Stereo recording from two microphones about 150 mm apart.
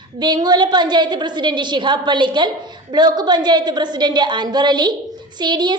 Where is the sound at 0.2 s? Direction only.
30° right (ahead or behind).